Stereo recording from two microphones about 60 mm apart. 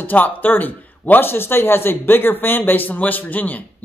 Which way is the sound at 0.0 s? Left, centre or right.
Left.